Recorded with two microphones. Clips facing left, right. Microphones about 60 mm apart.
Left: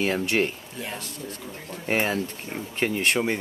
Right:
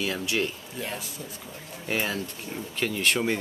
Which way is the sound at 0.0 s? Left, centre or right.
Left.